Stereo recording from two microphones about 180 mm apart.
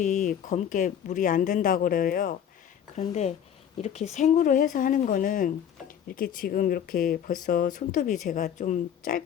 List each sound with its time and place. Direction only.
0.0 s speech: 45° left (ahead or behind)